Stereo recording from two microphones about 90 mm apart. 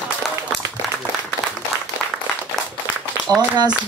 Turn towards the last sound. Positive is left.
turn(degrees=-50)  # may be behind; listen again after turning